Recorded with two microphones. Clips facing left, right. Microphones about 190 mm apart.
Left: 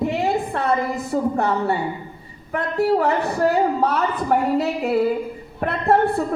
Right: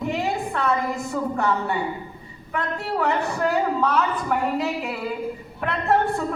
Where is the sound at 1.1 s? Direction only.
35° left (ahead or behind).